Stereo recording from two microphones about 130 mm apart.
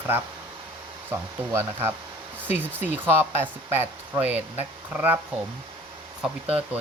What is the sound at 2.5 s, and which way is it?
Speech, 15° right (ahead or behind).